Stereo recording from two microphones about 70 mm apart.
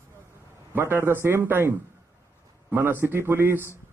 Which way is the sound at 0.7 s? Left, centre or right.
Right.